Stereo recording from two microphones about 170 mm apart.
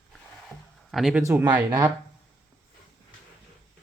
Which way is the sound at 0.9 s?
5° right (ahead or behind).